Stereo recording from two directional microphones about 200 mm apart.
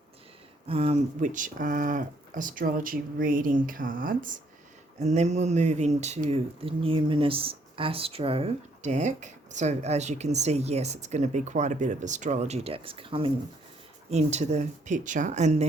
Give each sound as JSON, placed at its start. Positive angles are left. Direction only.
{"t": 0.7, "sound": "speech", "side_deg": -30}